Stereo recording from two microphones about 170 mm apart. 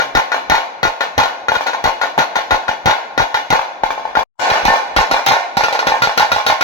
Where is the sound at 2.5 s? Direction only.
20° left (ahead or behind).